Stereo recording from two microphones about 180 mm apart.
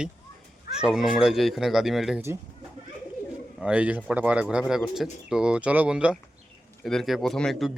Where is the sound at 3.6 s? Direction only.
5° right (ahead or behind).